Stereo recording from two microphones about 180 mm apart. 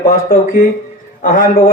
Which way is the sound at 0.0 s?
50° left (ahead or behind).